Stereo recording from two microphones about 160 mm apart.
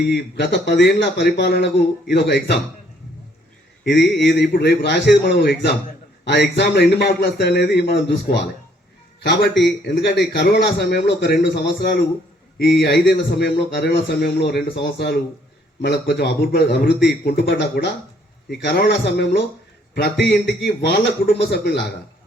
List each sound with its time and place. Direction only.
0.0 s a man's voice: 90° left
3.8 s a man's voice: 90° left
17.2 s a man's voice: 85° left